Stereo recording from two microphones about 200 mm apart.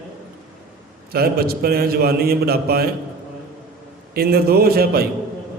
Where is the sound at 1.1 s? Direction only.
50° right (ahead or behind).